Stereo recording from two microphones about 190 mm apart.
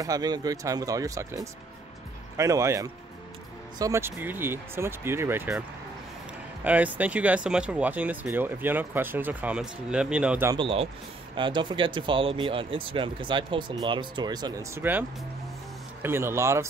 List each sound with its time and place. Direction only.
0.0 s speech: 20° right (ahead or behind)
6.6 s speech: 10° right (ahead or behind)
10.5 s speech: 30° right (ahead or behind)